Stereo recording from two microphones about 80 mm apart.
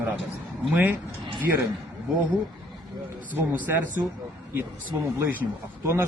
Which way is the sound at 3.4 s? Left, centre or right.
Right.